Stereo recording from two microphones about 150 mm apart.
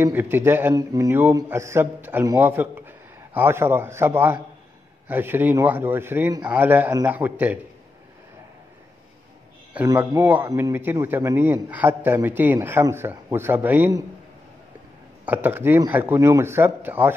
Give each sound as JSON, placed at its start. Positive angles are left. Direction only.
{"t": 0.0, "sound": "a man's voice", "side_deg": -15}
{"t": 9.9, "sound": "a man's voice", "side_deg": -15}
{"t": 15.2, "sound": "a man's voice", "side_deg": -10}